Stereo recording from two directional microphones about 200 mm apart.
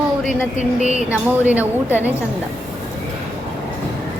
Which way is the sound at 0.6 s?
40° left (ahead or behind).